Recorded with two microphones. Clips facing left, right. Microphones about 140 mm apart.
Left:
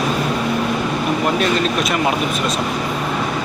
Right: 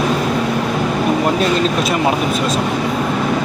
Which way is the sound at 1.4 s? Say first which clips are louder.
Right 2 dB; 30° right (ahead or behind).